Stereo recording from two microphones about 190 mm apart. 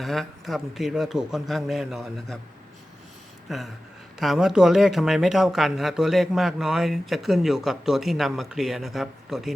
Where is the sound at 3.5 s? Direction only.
Centre (ahead or behind).